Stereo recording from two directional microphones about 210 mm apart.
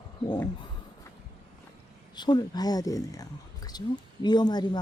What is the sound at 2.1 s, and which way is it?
Speech, 20° left (ahead or behind).